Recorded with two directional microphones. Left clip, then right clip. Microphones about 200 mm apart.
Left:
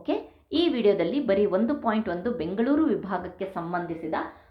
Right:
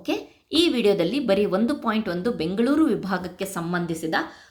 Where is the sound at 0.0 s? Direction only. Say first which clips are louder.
Right 1 dB; 30° right (ahead or behind).